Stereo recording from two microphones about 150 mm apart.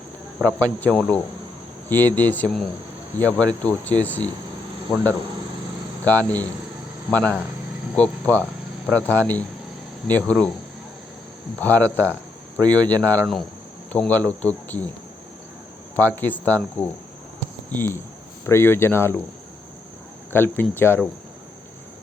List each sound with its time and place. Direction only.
0.6 s speech: 10° left (ahead or behind)
6.1 s speech: 10° left (ahead or behind)
11.6 s speech: 10° left (ahead or behind)
13.2 s cricket: centre (ahead or behind)
13.9 s speech: 10° left (ahead or behind)
16.0 s speech: 15° left (ahead or behind)
20.3 s speech: 15° left (ahead or behind)